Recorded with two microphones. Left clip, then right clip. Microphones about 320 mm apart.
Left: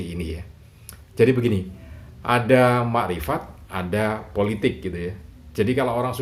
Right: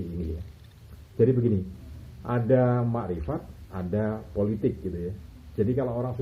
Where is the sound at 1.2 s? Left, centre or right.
Left.